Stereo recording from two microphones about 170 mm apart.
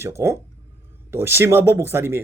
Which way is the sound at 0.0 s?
15° right (ahead or behind).